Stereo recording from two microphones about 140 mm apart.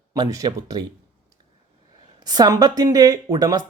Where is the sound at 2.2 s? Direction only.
30° right (ahead or behind).